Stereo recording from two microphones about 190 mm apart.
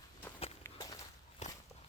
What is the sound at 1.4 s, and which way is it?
Walk, 40° left (ahead or behind).